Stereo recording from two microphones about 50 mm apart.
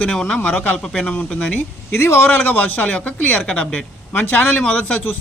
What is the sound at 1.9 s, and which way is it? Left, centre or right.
Speech, left.